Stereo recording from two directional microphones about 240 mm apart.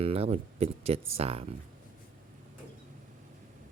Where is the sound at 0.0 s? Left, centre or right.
Right.